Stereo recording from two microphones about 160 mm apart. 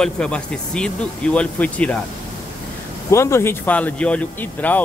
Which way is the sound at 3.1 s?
15° left (ahead or behind).